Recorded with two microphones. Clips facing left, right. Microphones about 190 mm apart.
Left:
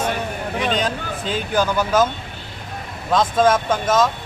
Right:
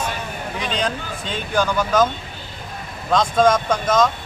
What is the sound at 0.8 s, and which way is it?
Speech, 5° left (ahead or behind).